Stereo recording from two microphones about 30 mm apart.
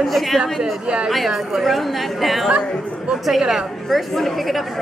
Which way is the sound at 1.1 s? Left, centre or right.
Centre.